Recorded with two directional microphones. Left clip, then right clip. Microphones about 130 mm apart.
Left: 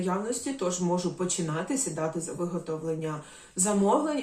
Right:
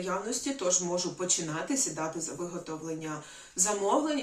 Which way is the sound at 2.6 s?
20° right (ahead or behind).